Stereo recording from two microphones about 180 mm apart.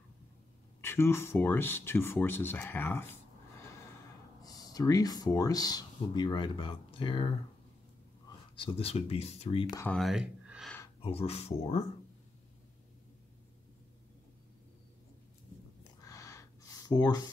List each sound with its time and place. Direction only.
0.7 s speech: 15° left (ahead or behind)
4.4 s speech: 20° left (ahead or behind)
8.5 s speech: 30° left (ahead or behind)
9.8 s speech: 5° left (ahead or behind)
11.0 s speech: 30° left (ahead or behind)
16.0 s a sound: 15° left (ahead or behind)